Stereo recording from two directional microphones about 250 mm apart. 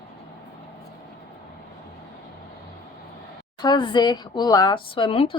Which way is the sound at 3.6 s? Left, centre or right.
Centre.